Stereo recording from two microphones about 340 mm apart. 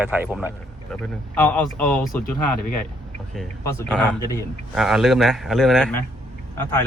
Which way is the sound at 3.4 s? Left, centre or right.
Centre.